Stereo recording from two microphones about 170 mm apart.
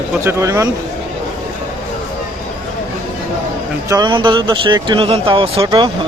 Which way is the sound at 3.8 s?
25° right (ahead or behind).